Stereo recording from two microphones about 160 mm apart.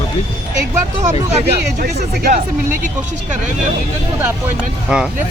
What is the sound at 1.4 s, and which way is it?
Speech, 75° right (ahead or behind).